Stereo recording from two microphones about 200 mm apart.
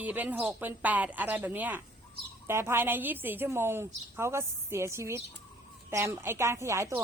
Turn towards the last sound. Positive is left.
turn(degrees=-15)  # may be behind; listen again after turning